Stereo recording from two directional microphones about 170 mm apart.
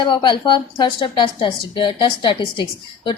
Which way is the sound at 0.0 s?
30° left (ahead or behind).